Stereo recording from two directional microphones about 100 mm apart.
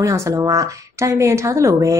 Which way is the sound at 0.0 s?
30° right (ahead or behind).